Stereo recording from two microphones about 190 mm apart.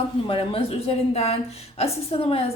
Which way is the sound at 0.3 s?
30° left (ahead or behind).